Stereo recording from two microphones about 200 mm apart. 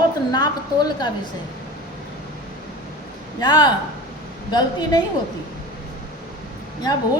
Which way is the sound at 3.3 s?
20° left (ahead or behind).